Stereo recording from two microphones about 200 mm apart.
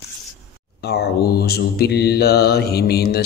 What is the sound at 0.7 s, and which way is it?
Mantra, 55° left (ahead or behind).